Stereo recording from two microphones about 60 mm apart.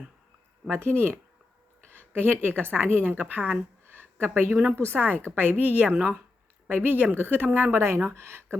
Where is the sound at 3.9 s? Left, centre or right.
Right.